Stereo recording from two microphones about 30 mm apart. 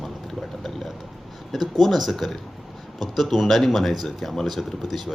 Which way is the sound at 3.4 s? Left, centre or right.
Centre.